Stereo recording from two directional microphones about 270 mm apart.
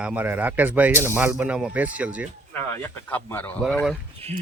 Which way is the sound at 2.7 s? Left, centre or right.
Centre.